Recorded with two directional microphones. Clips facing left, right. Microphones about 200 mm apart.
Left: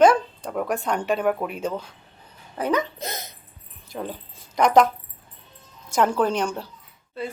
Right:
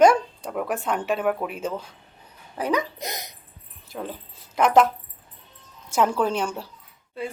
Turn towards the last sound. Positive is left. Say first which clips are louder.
# even
turn(degrees=-10)  # may be behind; listen again after turning